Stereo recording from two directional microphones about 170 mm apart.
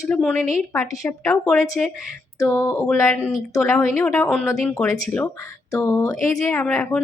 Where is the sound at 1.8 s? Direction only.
5° left (ahead or behind).